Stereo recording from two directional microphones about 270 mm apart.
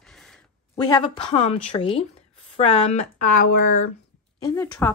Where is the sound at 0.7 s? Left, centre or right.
Centre; by 3.8 s left.